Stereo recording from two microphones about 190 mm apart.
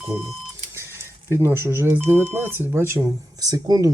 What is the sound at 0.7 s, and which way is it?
Cash register, 15° right (ahead or behind).